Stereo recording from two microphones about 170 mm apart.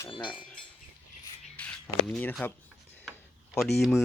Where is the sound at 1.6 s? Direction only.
5° left (ahead or behind).